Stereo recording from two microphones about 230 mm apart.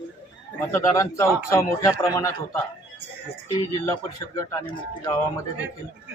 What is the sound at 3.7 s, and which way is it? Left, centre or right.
A man's voice, centre.